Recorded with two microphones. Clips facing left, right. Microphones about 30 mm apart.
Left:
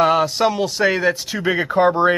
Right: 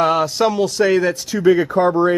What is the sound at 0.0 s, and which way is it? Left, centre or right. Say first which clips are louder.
Speech: even; centre.